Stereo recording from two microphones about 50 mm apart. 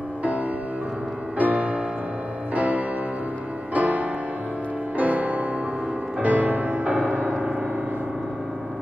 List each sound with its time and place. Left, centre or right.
0.2 s music: right